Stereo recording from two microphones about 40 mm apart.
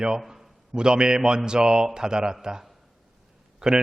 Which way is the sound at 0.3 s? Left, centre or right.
Centre.